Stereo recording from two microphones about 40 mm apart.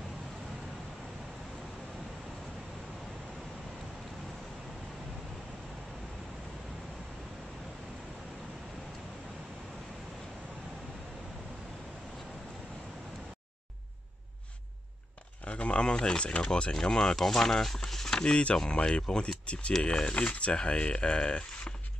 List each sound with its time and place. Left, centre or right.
15.4 s speech: left; by 18.2 s centre
18.2 s speech: left